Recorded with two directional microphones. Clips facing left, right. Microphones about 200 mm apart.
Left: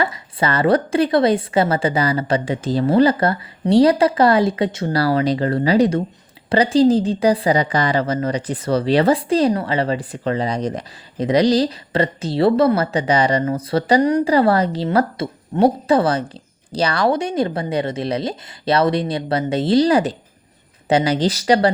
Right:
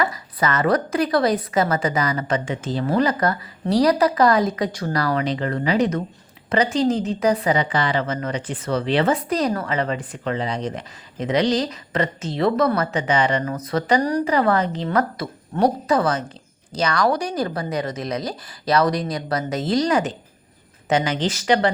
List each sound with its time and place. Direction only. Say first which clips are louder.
0.0 s a woman's voice: left 2 dB; 30° left (ahead or behind)
14.8 s a woman's voice: left 4 dB; 25° left (ahead or behind)